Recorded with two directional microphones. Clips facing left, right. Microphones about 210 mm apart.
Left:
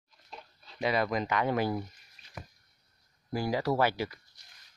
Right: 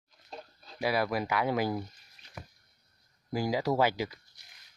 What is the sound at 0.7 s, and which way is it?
Speech, 5° right (ahead or behind).